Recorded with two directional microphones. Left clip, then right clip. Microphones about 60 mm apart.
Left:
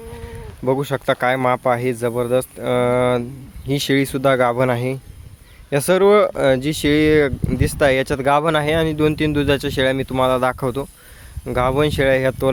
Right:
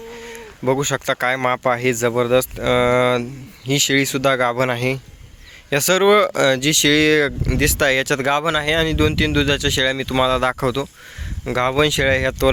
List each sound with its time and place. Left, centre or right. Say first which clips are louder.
0.7 s speech: even; left
3.7 s speech: right 2 dB; left
5.7 s speech: left 1 dB; centre
6.6 s speech: right 2 dB; left
10.1 s speech: even; centre